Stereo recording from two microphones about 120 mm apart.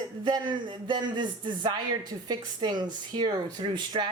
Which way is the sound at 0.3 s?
40° right (ahead or behind).